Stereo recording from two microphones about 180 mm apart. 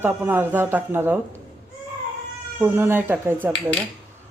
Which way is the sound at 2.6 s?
10° right (ahead or behind).